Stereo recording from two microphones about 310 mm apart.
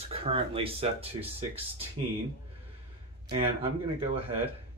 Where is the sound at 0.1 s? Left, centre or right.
Centre.